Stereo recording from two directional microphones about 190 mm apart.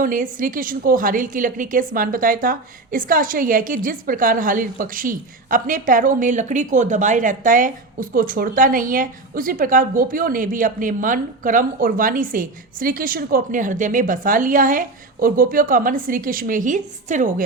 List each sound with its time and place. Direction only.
0.0 s a woman's voice: 45° right (ahead or behind)